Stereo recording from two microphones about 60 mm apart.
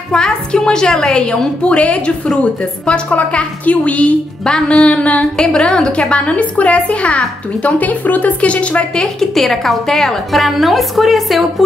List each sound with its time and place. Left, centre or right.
0.1 s a woman's voice: centre
9.2 s a woman's voice: centre